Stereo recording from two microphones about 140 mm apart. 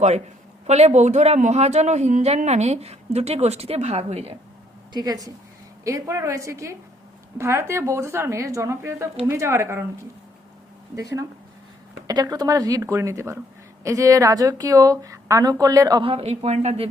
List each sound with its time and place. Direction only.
0.7 s speech: 50° right (ahead or behind)
4.9 s a woman's voice: 25° right (ahead or behind)
10.9 s a woman's voice: 25° right (ahead or behind)
16.0 s speech: 45° right (ahead or behind)